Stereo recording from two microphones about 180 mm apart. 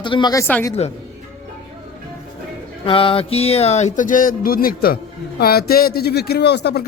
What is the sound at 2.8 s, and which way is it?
Music, 30° left (ahead or behind).